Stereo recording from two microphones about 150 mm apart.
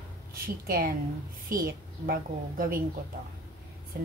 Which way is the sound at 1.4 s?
75° right (ahead or behind).